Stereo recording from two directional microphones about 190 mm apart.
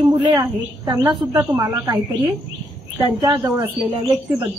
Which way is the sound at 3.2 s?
20° right (ahead or behind).